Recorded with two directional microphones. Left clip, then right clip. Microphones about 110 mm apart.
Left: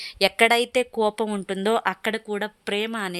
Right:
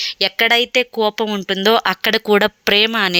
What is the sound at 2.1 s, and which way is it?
Speech, 50° right (ahead or behind).